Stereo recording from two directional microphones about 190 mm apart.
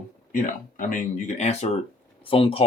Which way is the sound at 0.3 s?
45° left (ahead or behind).